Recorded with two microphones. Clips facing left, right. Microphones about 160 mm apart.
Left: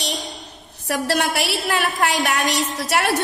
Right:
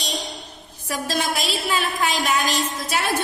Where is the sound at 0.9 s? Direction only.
70° left (ahead or behind).